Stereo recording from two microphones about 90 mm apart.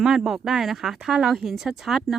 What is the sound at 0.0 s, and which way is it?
Speech, 5° right (ahead or behind).